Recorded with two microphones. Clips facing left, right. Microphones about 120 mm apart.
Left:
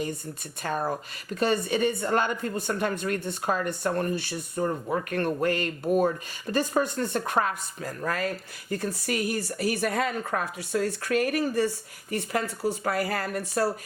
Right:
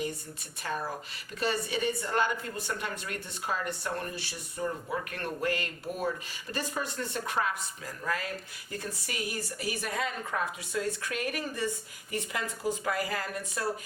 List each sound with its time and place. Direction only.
0.6 s speech: 50° left (ahead or behind)